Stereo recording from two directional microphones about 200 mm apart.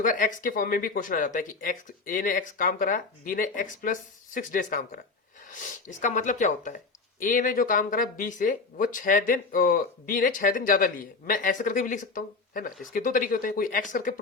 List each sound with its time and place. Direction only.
0.0 s speech: 40° left (ahead or behind)